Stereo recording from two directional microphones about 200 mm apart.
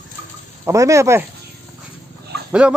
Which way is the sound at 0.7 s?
15° right (ahead or behind).